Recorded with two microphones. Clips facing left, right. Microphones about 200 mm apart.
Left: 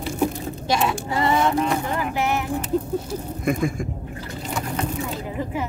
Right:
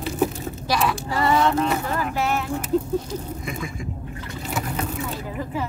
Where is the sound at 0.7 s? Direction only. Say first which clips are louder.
Left 1 dB; 25° left (ahead or behind).